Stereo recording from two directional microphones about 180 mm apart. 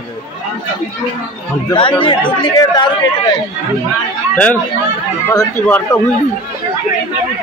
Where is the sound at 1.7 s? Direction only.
30° left (ahead or behind).